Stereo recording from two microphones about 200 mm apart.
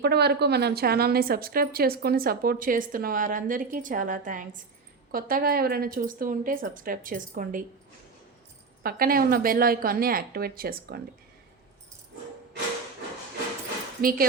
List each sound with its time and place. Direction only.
0.0 s a woman's voice: 55° right (ahead or behind)
8.8 s a woman's voice: 50° right (ahead or behind)
14.0 s a woman's voice: 45° right (ahead or behind)